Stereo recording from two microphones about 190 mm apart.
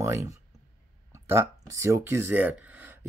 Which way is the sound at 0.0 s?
15° right (ahead or behind).